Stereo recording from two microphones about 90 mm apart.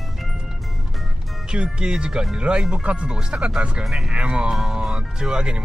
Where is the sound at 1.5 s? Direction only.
10° right (ahead or behind).